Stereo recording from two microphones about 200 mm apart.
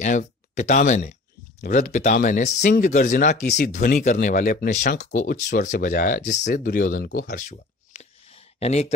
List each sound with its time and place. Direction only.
0.0 s speech: 40° left (ahead or behind)
3.4 s speech: 50° left (ahead or behind)
7.2 s a sound: 45° left (ahead or behind)